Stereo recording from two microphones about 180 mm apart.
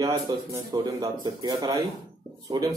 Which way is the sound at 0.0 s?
20° right (ahead or behind).